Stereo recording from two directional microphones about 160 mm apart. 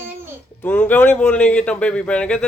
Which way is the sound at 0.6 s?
10° left (ahead or behind).